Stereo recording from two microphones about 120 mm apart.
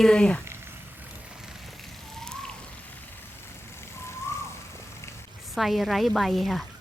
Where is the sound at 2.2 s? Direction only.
5° left (ahead or behind).